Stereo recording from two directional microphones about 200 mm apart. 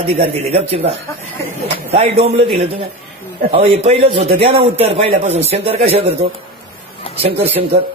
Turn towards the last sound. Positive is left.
turn(degrees=-30)  # may be behind; listen again after turning